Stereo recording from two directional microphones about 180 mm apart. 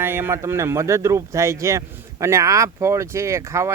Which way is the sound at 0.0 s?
10° right (ahead or behind).